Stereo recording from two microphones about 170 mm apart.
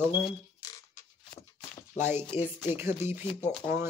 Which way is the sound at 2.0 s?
15° right (ahead or behind).